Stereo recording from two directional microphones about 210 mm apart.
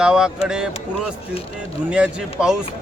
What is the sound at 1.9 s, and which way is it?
Speech, 5° right (ahead or behind).